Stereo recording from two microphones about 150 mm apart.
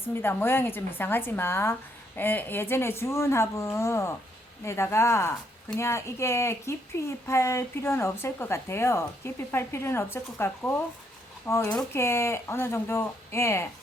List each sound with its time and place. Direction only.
0.1 s speech: 15° left (ahead or behind)